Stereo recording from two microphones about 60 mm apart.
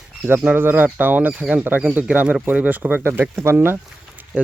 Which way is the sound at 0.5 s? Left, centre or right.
Right.